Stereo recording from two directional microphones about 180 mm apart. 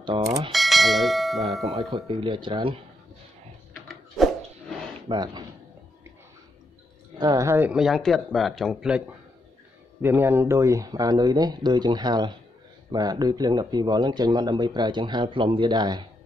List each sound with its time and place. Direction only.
0.0 s speech: 20° right (ahead or behind)
0.5 s speech: centre (ahead or behind)
1.9 s speech: 30° right (ahead or behind)
5.0 s speech: 25° right (ahead or behind)
7.2 s speech: 20° right (ahead or behind); by 9.0 s centre (ahead or behind)
10.0 s speech: 10° right (ahead or behind)